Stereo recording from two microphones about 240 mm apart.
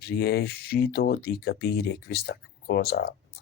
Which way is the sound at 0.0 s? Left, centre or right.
Left.